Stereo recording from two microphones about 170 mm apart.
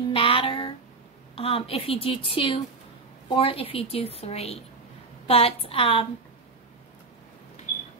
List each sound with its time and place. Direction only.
0.1 s child singing: 35° left (ahead or behind)
1.3 s a woman's voice: 35° left (ahead or behind)